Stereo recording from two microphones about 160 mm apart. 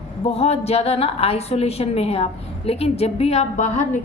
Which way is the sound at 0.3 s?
40° left (ahead or behind).